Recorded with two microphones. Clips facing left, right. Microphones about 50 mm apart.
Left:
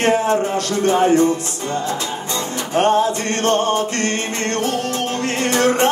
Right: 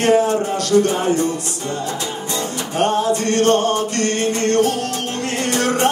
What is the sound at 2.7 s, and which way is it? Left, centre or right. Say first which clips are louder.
Music: left 2 dB; left.